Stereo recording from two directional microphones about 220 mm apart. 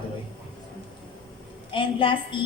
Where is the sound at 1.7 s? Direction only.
25° left (ahead or behind).